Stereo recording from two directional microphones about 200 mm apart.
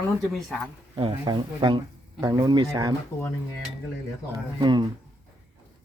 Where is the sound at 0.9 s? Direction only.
20° right (ahead or behind).